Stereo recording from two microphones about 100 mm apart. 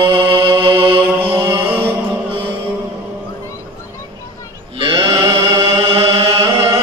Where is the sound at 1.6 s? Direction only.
20° right (ahead or behind).